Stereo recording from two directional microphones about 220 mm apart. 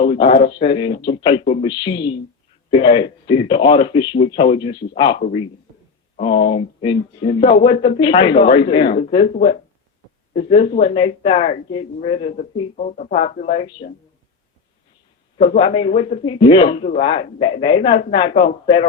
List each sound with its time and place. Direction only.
0.0 s a man's voice: 25° left (ahead or behind)
6.1 s speech: 30° left (ahead or behind)
15.4 s speech: 25° left (ahead or behind)